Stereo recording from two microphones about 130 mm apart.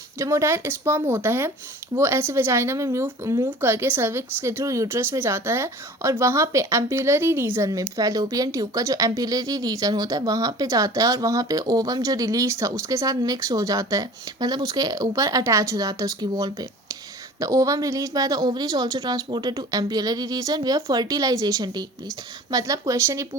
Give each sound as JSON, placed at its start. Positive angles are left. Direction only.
{"t": 0.2, "sound": "speech", "side_deg": -20}